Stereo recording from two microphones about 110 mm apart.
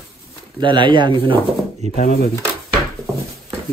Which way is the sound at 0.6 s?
45° right (ahead or behind).